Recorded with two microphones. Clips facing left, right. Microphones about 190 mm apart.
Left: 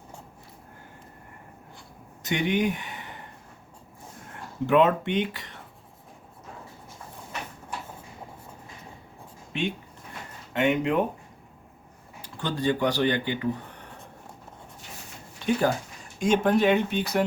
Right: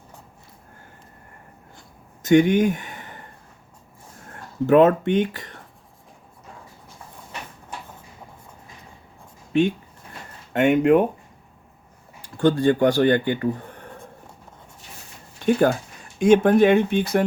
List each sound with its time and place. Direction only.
2.2 s speech: 45° right (ahead or behind)
4.6 s speech: 45° right (ahead or behind)
9.5 s speech: 45° right (ahead or behind)
12.2 s speech: 50° right (ahead or behind)
16.2 s speech: 55° right (ahead or behind)